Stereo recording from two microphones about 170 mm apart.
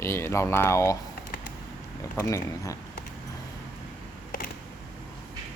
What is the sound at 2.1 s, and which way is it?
Speech, 20° left (ahead or behind).